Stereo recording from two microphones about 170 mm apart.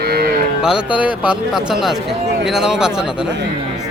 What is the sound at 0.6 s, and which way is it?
Speech, 5° right (ahead or behind).